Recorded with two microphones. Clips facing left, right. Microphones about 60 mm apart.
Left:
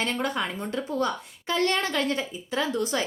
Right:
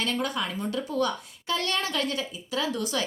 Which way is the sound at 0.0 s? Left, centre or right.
Left.